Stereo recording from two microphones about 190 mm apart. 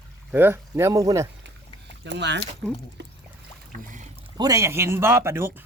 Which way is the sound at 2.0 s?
65° right (ahead or behind).